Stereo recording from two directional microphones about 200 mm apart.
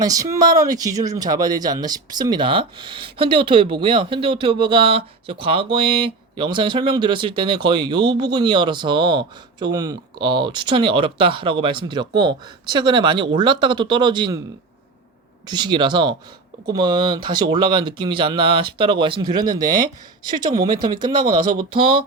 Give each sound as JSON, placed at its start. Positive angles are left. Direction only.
{"t": 0.0, "sound": "speech", "side_deg": -20}
{"t": 15.4, "sound": "speech", "side_deg": -20}
{"t": 21.6, "sound": "speech", "side_deg": -25}